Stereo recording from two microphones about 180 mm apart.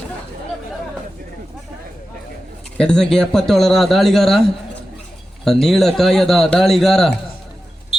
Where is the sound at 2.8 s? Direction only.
5° left (ahead or behind).